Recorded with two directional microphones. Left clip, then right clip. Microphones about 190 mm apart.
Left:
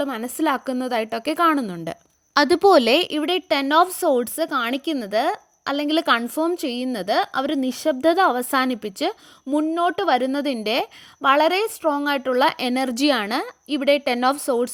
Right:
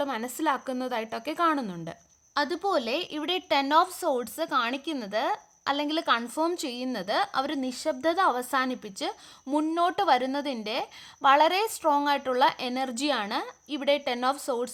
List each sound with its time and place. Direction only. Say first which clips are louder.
0.0 s a woman's voice: left 5 dB; 25° left (ahead or behind)
9.5 s a woman's voice: left 5 dB; 20° left (ahead or behind)